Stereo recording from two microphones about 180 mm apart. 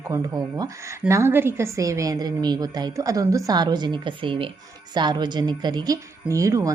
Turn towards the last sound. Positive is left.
turn(degrees=-20)  # may be behind; listen again after turning